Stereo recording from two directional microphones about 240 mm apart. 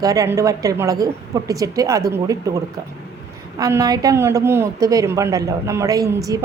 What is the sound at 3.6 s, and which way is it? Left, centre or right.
A woman's voice, centre.